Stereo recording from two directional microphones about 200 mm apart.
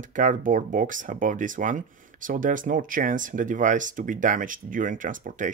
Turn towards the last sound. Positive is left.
turn(degrees=-40)  # may be behind; listen again after turning